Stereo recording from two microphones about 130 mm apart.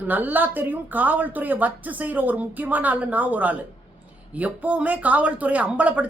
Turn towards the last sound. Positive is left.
turn(degrees=-10)  # may be behind; listen again after turning